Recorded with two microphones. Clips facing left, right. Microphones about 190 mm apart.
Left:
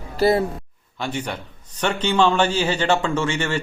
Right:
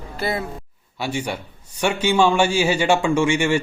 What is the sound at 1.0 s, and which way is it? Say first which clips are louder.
A man's voice: right 2 dB; 10° right (ahead or behind).